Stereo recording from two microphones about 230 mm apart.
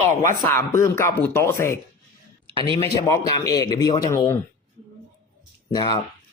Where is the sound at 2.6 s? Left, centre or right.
Right.